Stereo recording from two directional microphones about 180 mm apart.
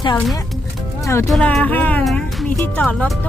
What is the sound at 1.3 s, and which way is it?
Speech, 5° left (ahead or behind).